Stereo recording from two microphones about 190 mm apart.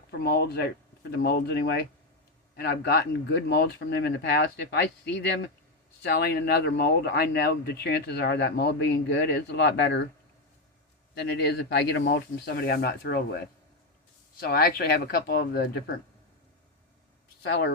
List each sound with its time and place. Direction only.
0.1 s speech: 55° left (ahead or behind)
6.0 s speech: 60° left (ahead or behind)
11.1 s speech: 60° left (ahead or behind)
17.4 s speech: 65° left (ahead or behind)